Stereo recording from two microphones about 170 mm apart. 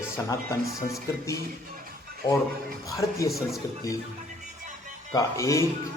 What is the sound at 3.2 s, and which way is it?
Speech, centre (ahead or behind).